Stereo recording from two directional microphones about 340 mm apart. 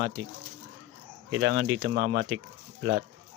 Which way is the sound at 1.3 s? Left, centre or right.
Right.